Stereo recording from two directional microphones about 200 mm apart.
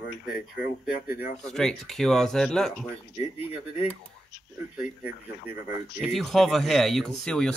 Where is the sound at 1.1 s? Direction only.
45° left (ahead or behind).